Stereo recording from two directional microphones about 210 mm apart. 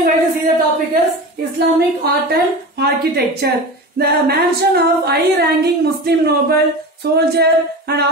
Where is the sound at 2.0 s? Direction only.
50° right (ahead or behind).